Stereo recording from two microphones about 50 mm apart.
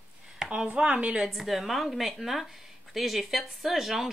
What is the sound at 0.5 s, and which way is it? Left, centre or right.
Speech, right.